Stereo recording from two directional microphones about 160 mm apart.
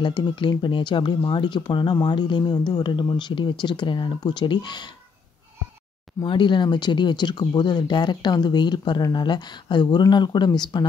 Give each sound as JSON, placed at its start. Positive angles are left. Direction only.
{"t": 0.0, "sound": "speech", "side_deg": 30}
{"t": 6.2, "sound": "speech", "side_deg": 30}